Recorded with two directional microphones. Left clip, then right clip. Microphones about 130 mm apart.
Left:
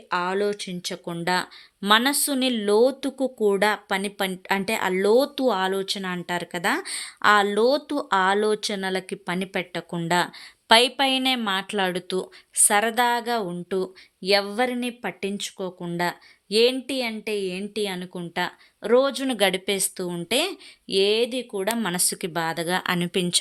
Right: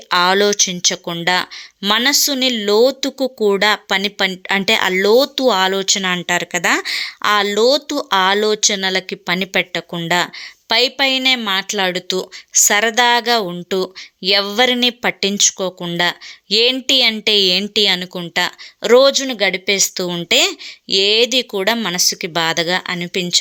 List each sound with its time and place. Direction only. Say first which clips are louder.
0.1 s a woman's voice: right 11 dB; 20° right (ahead or behind)
19.1 s a woman's voice: right 6 dB; 5° left (ahead or behind)
19.7 s speech: right 10 dB; 10° right (ahead or behind)
21.8 s speech: right 10 dB; 5° left (ahead or behind)
22.3 s speech: right 9 dB; 15° right (ahead or behind)
22.8 s speech: right 3 dB; 15° left (ahead or behind)
23.0 s a woman's voice: right 7 dB; 5° left (ahead or behind)